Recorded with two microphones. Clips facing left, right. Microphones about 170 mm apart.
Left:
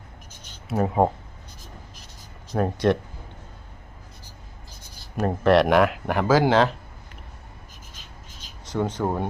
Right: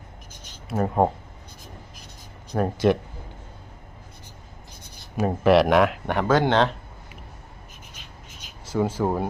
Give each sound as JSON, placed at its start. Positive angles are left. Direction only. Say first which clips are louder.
{"t": 0.7, "sound": "speech", "louder": "left 1 dB", "side_deg": 0}
{"t": 2.6, "sound": "speech", "louder": "right 1 dB", "side_deg": 0}
{"t": 5.1, "sound": "speech", "louder": "right 1 dB", "side_deg": -5}
{"t": 8.6, "sound": "speech", "louder": "right 2 dB", "side_deg": -5}